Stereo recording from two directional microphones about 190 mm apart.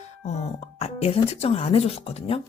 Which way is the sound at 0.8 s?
35° left (ahead or behind).